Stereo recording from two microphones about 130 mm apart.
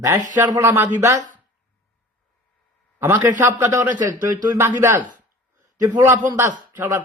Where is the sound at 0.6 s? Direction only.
20° right (ahead or behind).